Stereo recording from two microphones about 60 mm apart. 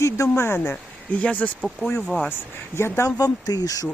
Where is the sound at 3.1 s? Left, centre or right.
Left.